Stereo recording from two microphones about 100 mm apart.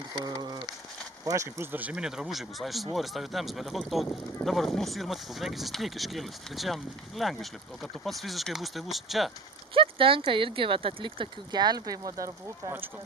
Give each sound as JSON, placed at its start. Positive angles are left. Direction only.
{"t": 0.3, "sound": "a sound", "side_deg": -40}
{"t": 1.2, "sound": "speech", "side_deg": -35}
{"t": 1.7, "sound": "speech", "side_deg": -15}
{"t": 9.7, "sound": "speech", "side_deg": -65}